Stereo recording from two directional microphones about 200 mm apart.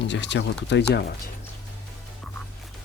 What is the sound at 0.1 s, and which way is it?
Speech, 60° left (ahead or behind).